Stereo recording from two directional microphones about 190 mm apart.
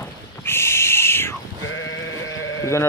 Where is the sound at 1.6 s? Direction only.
90° left.